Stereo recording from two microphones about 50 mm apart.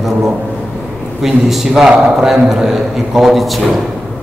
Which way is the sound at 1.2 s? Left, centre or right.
Centre.